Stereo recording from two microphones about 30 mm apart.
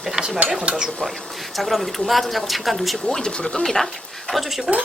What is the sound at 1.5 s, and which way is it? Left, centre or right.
Speech, centre.